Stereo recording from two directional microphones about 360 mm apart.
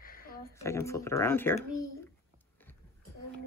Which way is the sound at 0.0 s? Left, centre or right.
Left.